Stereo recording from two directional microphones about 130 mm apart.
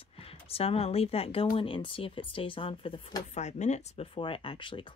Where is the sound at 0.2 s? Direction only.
50° left (ahead or behind).